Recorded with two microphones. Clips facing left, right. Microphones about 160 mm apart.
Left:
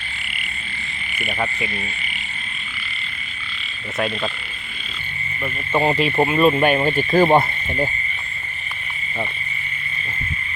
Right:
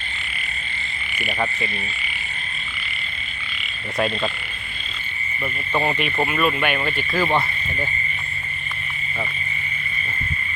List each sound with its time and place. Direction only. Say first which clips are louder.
3.9 s speech: right 1 dB; centre (ahead or behind)
5.7 s speech: left 5 dB; 20° left (ahead or behind)
6.9 s speech: left 7 dB; 45° left (ahead or behind)